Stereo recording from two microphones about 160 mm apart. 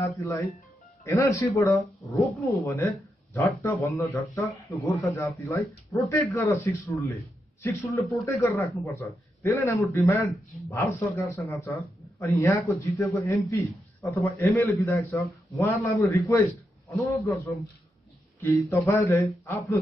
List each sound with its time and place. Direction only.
0.0 s a man's voice: 20° left (ahead or behind)
18.4 s a man's voice: 20° left (ahead or behind)